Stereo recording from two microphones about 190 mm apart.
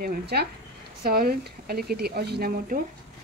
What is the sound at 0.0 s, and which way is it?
A woman's voice, 55° right (ahead or behind).